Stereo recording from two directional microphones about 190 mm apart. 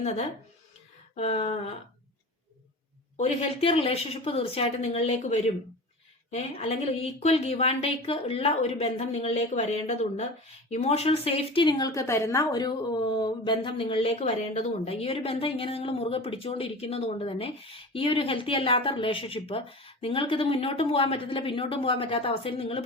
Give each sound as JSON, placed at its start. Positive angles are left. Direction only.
{"t": 1.1, "sound": "speech", "side_deg": 35}
{"t": 3.2, "sound": "a woman's voice", "side_deg": 35}